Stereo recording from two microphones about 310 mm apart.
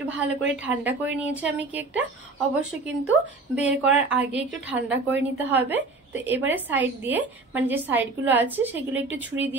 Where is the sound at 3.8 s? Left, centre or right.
Centre.